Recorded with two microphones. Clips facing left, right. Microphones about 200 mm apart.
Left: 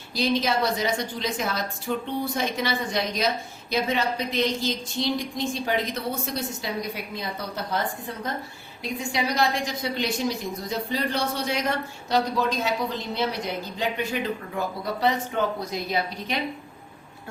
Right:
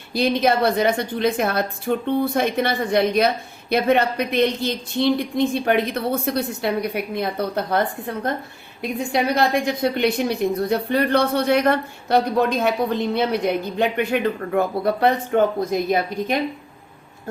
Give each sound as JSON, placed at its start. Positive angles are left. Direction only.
{"t": 0.1, "sound": "a woman's voice", "side_deg": -60}